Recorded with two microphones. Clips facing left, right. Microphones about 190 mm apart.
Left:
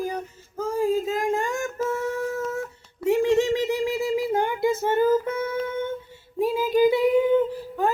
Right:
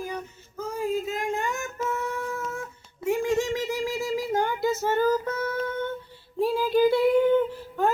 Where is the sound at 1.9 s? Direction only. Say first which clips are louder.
Left 4 dB; 45° left (ahead or behind).